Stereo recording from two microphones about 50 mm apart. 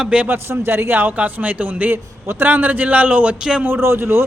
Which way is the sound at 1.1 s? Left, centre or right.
Right.